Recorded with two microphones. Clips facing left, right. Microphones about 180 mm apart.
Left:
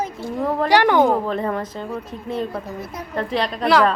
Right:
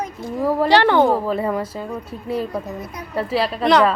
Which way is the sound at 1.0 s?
5° right (ahead or behind).